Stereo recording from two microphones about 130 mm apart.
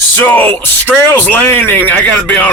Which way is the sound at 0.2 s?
15° left (ahead or behind).